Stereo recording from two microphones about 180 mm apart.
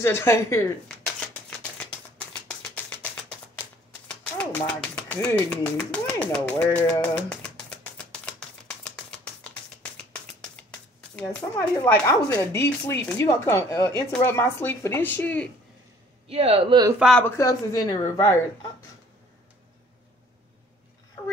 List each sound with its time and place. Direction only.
0.0 s speech: 15° left (ahead or behind)
0.8 s a sound: 5° left (ahead or behind)
2.7 s music: 10° left (ahead or behind)
4.1 s a sound: 5° left (ahead or behind)
11.1 s speech: 10° left (ahead or behind)
16.3 s speech: 35° right (ahead or behind)
17.2 s speech: 20° left (ahead or behind)